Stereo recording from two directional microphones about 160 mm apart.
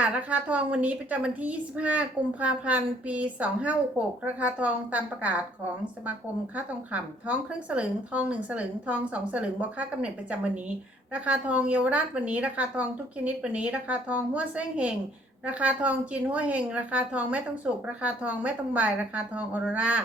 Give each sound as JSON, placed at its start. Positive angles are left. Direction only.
{"t": 0.0, "sound": "a woman's voice", "side_deg": -10}
{"t": 6.6, "sound": "a woman's voice", "side_deg": -10}
{"t": 11.1, "sound": "a woman's voice", "side_deg": -10}